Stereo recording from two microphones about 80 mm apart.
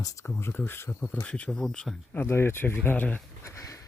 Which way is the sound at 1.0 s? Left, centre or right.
Centre.